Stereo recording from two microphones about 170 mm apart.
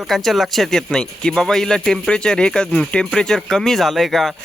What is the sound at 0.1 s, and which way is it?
Speech, centre (ahead or behind).